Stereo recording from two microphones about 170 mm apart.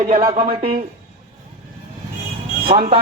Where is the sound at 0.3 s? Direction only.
55° right (ahead or behind).